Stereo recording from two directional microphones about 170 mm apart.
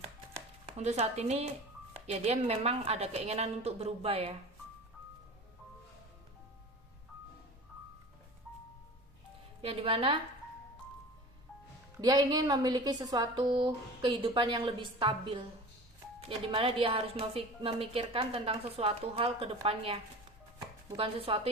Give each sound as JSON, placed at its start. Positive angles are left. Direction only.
{"t": 0.8, "sound": "a woman's voice", "side_deg": -40}
{"t": 9.6, "sound": "a woman's voice", "side_deg": -35}
{"t": 11.9, "sound": "a woman's voice", "side_deg": -25}
{"t": 16.5, "sound": "a woman's voice", "side_deg": -30}